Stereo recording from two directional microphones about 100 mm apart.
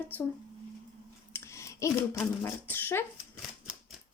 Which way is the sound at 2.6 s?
20° left (ahead or behind).